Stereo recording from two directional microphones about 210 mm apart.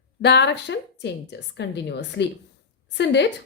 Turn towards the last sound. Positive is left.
turn(degrees=55)  # may be behind; listen again after turning